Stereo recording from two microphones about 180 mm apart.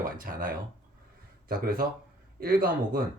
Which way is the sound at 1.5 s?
55° right (ahead or behind).